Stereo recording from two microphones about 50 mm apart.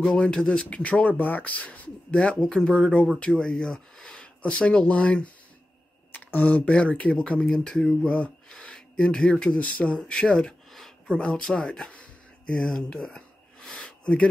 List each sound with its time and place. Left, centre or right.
0.0 s speech: centre
2.4 s speech: centre
4.4 s speech: left
8.5 s a sound: centre
9.6 s speech: left
10.1 s speech: centre
12.9 s a sound: centre